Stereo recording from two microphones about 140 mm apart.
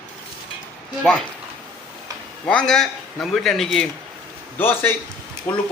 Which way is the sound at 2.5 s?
5° left (ahead or behind).